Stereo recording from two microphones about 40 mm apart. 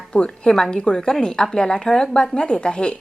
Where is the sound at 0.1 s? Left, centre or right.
Left.